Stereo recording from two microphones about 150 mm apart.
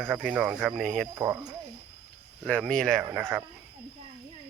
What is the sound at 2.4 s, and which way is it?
Speech, 5° left (ahead or behind).